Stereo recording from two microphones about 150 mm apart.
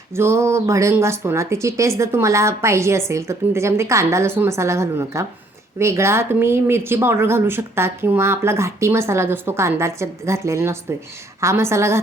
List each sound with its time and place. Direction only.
0.2 s speech: 20° right (ahead or behind)